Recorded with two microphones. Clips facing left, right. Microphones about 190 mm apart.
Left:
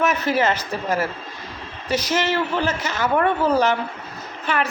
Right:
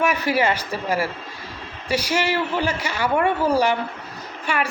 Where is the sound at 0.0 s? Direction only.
15° right (ahead or behind).